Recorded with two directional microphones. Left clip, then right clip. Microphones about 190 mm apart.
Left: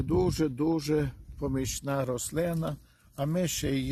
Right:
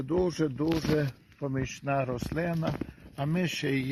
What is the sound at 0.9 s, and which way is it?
Speech, 45° left (ahead or behind).